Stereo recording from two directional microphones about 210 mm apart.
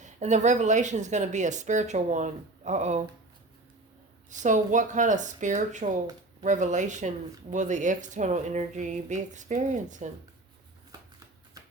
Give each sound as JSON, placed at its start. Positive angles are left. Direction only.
{"t": 0.0, "sound": "speech", "side_deg": -35}
{"t": 4.3, "sound": "speech", "side_deg": -35}